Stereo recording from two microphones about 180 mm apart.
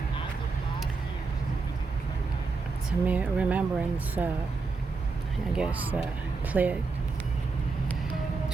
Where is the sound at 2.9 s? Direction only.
5° right (ahead or behind).